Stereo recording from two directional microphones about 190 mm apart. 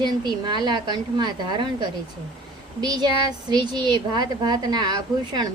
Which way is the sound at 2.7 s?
20° right (ahead or behind).